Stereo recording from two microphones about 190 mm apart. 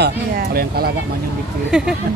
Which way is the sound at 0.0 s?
55° right (ahead or behind).